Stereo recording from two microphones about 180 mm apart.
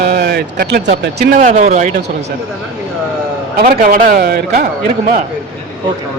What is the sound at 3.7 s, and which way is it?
Speech, 50° right (ahead or behind).